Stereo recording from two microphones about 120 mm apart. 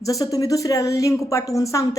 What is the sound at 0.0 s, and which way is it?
A woman's voice, 30° left (ahead or behind).